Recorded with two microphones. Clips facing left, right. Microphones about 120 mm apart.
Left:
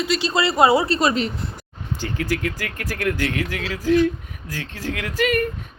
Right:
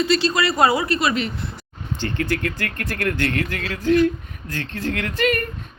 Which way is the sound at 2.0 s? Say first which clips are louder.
Right 1 dB; 5° left (ahead or behind).